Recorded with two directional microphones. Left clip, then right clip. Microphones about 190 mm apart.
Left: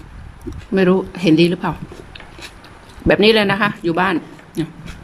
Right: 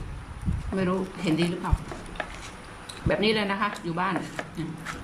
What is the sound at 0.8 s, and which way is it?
Speech, 55° left (ahead or behind).